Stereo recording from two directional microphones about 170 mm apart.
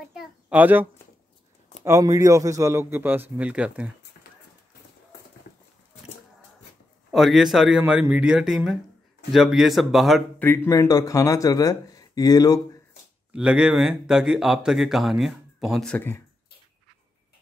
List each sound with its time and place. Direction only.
0.1 s a sound: 5° right (ahead or behind)
1.9 s a man's voice: 20° right (ahead or behind)
7.1 s speech: centre (ahead or behind)
10.4 s speech: 10° left (ahead or behind)
13.3 s speech: 5° right (ahead or behind)